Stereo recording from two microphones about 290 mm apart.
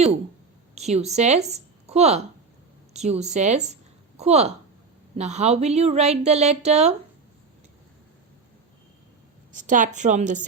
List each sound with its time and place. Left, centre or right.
0.8 s a woman's voice: right
9.6 s a woman's voice: right